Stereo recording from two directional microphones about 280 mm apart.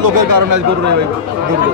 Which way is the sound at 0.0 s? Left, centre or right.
Right.